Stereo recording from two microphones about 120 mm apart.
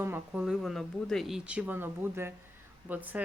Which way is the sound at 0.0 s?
20° right (ahead or behind).